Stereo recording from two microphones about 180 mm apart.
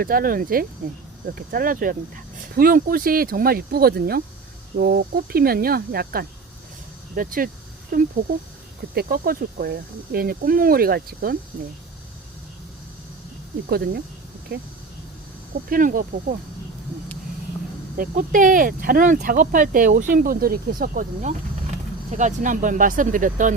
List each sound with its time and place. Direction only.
0.0 s speech: 55° right (ahead or behind)
13.7 s speech: 60° right (ahead or behind)
15.7 s speech: 50° right (ahead or behind)
17.9 s speech: 50° right (ahead or behind)